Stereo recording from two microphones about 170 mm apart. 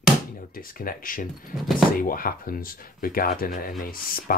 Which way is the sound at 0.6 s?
55° left (ahead or behind).